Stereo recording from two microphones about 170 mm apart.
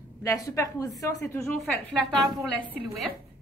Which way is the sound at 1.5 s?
Centre (ahead or behind).